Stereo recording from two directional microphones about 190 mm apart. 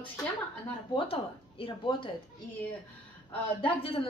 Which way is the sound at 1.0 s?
30° left (ahead or behind).